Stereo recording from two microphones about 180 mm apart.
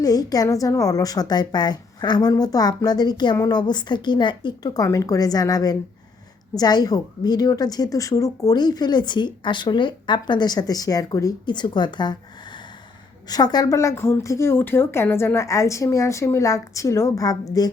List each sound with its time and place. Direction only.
0.0 s a woman's voice: 20° left (ahead or behind)